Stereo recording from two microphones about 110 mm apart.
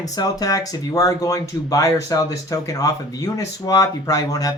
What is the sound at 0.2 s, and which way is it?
Speech, 35° left (ahead or behind).